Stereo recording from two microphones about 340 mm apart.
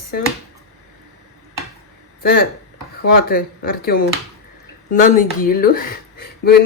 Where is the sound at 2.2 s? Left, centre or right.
Left.